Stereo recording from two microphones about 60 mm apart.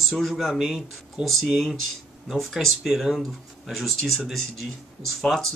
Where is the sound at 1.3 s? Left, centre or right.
Centre.